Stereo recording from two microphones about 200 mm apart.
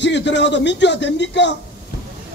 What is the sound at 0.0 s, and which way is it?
A man's voice, 60° left (ahead or behind).